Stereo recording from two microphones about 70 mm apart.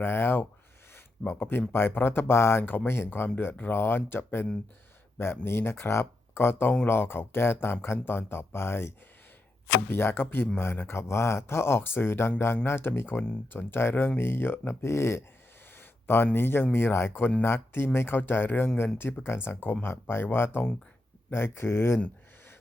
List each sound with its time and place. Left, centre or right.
0.0 s speech: left
5.5 s speech: left